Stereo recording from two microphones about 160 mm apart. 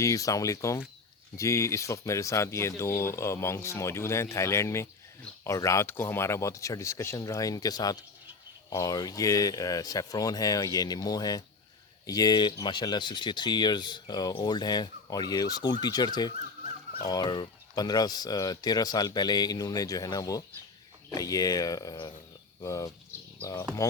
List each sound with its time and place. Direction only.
0.0 s speech: 20° left (ahead or behind)
17.1 s speech: 25° left (ahead or behind)